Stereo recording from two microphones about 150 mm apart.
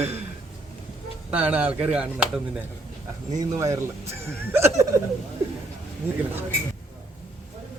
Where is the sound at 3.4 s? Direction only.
20° right (ahead or behind).